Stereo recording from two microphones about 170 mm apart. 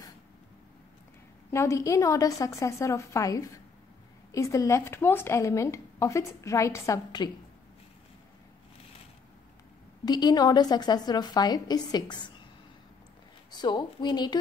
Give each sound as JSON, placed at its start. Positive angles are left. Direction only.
{"t": 1.5, "sound": "a woman's voice", "side_deg": 15}
{"t": 10.0, "sound": "a woman's voice", "side_deg": 25}
{"t": 13.5, "sound": "a woman's voice", "side_deg": 25}